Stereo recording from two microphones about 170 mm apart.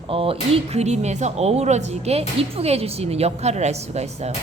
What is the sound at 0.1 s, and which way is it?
Speech, 30° right (ahead or behind).